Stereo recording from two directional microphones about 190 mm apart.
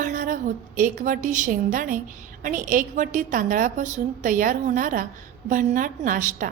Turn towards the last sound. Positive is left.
turn(degrees=-45)  # may be behind; listen again after turning